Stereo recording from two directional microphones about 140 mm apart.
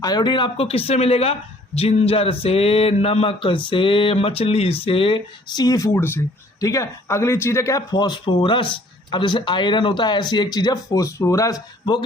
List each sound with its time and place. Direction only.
0.0 s speech: 30° left (ahead or behind)